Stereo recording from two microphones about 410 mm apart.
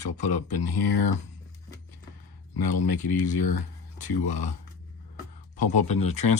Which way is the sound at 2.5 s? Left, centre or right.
Left.